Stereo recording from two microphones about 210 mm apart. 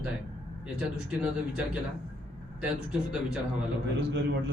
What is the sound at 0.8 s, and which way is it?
Speech, 5° right (ahead or behind).